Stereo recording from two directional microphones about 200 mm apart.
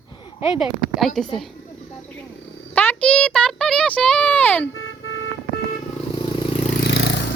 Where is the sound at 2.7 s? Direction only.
10° left (ahead or behind).